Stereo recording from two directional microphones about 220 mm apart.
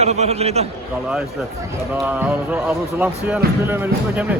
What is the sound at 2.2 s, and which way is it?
Speech, 10° right (ahead or behind).